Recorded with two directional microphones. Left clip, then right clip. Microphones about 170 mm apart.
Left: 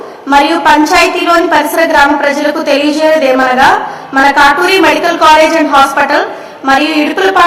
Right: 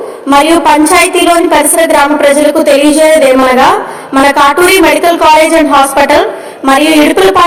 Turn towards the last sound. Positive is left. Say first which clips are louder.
# right 3 dB
turn(degrees=-25)  # may be behind; listen again after turning